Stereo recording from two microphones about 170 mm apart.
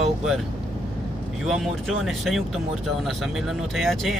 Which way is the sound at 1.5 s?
Centre (ahead or behind).